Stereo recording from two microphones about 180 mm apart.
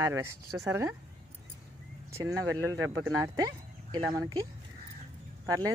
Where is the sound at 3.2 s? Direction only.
20° right (ahead or behind).